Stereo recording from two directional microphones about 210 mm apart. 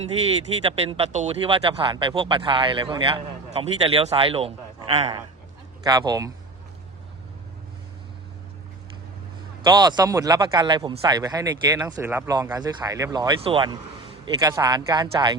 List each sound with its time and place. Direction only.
0.6 s speech: 25° right (ahead or behind)
5.8 s speech: 15° right (ahead or behind)
9.6 s speech: 20° right (ahead or behind)